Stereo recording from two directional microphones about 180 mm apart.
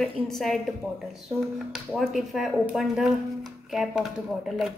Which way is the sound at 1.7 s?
Centre (ahead or behind).